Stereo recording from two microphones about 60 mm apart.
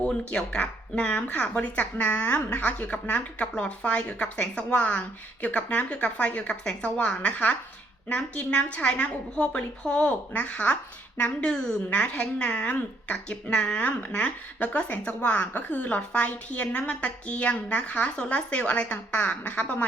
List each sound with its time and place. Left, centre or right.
0.0 s a woman's voice: centre